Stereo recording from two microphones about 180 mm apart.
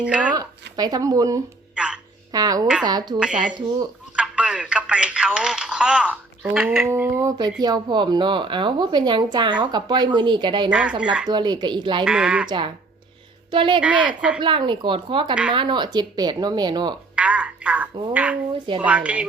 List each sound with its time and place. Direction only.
0.0 s speech: 5° right (ahead or behind)
0.8 s a woman's voice: 20° right (ahead or behind)
1.7 s music: 5° right (ahead or behind)
2.3 s a woman's voice: 20° right (ahead or behind)
4.1 s telephone: 5° right (ahead or behind)
6.8 s a woman's voice: 15° right (ahead or behind)
10.7 s speech: 5° right (ahead or behind)
11.3 s a woman's voice: 25° right (ahead or behind)
12.0 s speech: 5° right (ahead or behind)
12.5 s a woman's voice: 25° right (ahead or behind)
14.1 s speech: 5° right (ahead or behind)
14.4 s a woman's voice: 25° right (ahead or behind)
17.2 s telephone: 5° right (ahead or behind)
18.8 s speech: 5° right (ahead or behind)